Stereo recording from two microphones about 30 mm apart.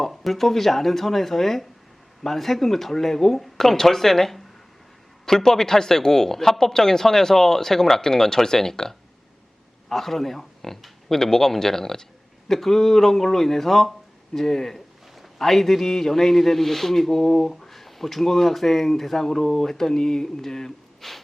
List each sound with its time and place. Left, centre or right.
0.0 s a man's voice: centre
9.9 s a man's voice: centre